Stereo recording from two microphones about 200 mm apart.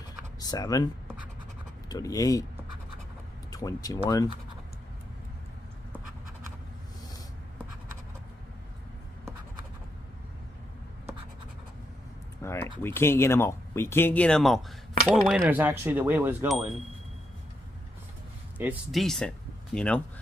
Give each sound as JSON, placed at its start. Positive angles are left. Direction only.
{"t": 0.4, "sound": "speech", "side_deg": 20}
{"t": 1.9, "sound": "speech", "side_deg": 20}
{"t": 3.4, "sound": "speech", "side_deg": 20}
{"t": 12.4, "sound": "typing", "side_deg": 15}
{"t": 12.8, "sound": "speech", "side_deg": 10}
{"t": 15.0, "sound": "coin", "side_deg": -5}
{"t": 18.6, "sound": "speech", "side_deg": -5}